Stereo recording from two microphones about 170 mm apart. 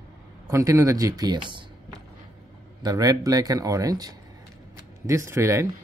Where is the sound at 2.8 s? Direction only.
20° right (ahead or behind).